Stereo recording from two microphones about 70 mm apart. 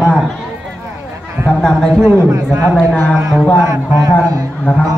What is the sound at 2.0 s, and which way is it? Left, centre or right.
Speech, right.